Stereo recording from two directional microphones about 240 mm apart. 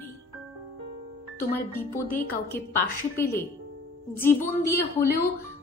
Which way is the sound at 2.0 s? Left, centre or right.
Left.